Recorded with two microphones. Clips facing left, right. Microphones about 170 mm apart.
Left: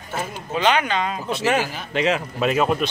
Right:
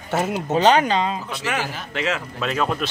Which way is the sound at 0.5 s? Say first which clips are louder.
Right 3 dB; 40° right (ahead or behind).